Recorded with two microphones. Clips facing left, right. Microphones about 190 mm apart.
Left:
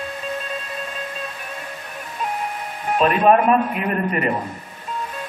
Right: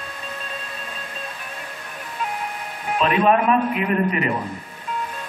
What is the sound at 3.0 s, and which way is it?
A man's voice, 45° left (ahead or behind).